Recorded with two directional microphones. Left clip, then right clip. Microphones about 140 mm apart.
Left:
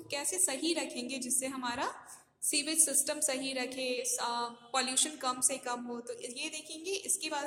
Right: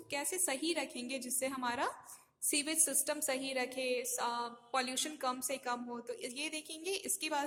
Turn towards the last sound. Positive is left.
turn(degrees=-30)  # may be behind; listen again after turning